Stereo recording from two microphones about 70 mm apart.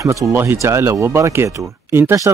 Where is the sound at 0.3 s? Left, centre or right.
Right.